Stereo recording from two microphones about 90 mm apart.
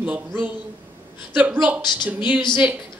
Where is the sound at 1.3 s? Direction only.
20° right (ahead or behind).